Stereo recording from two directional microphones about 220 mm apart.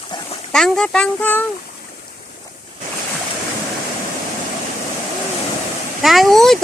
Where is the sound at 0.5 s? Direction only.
Centre (ahead or behind).